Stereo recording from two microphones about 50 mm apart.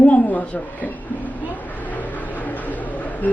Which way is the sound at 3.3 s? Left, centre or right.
Left.